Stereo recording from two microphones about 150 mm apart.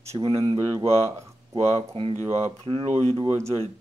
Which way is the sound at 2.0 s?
35° right (ahead or behind).